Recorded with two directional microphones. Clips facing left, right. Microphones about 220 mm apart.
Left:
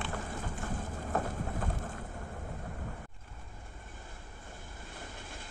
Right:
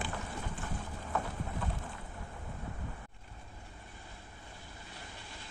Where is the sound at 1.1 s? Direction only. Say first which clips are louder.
Left 3 dB; 45° left (ahead or behind).